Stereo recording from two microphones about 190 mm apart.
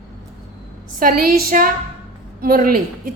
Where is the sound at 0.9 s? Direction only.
45° right (ahead or behind).